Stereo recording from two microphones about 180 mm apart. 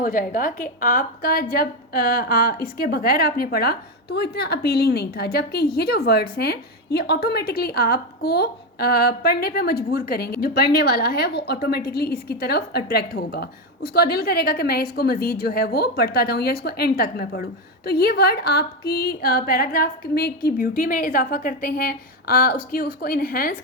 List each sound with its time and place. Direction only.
0.0 s a woman's voice: 50° left (ahead or behind)